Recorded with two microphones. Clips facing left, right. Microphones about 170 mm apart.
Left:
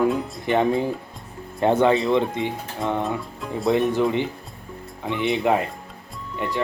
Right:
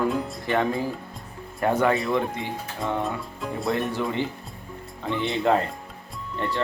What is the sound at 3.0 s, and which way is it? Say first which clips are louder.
Speech: left 2 dB; centre (ahead or behind).